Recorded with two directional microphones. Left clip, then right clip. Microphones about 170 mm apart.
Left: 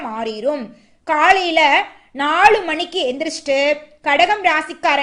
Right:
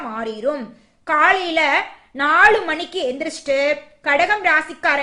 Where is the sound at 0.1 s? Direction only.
20° left (ahead or behind).